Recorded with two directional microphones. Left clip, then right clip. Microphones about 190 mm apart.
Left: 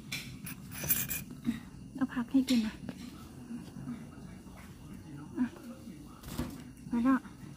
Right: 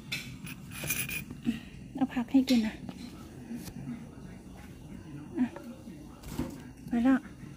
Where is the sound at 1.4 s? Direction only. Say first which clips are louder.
Right 3 dB; 10° right (ahead or behind).